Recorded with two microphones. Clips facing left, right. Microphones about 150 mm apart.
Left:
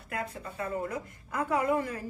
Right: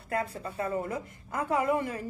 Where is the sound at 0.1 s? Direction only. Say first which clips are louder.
Right 4 dB; 30° right (ahead or behind).